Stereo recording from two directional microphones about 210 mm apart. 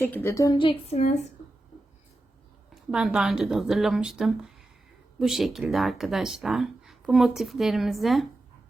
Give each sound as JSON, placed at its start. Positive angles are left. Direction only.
{"t": 0.0, "sound": "a woman's voice", "side_deg": 10}
{"t": 2.9, "sound": "speech", "side_deg": -5}